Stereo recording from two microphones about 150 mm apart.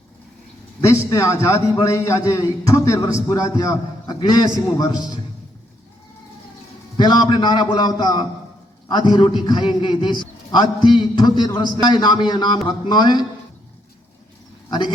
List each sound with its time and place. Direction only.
0.8 s a man's voice: 20° left (ahead or behind)
6.9 s a man's voice: 30° left (ahead or behind)
14.7 s speech: 30° left (ahead or behind)